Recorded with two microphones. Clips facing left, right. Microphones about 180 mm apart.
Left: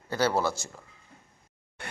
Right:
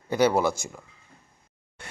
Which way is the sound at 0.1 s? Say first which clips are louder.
Right 5 dB; 15° right (ahead or behind).